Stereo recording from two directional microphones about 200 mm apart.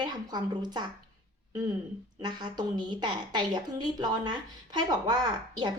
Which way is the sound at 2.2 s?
20° right (ahead or behind).